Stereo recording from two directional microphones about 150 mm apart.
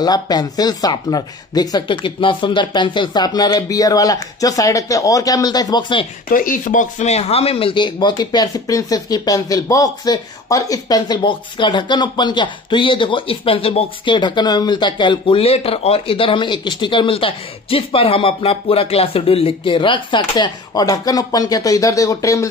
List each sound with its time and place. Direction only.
0.0 s speech: 25° left (ahead or behind)
6.3 s speech: 65° left (ahead or behind); by 22.5 s 20° left (ahead or behind)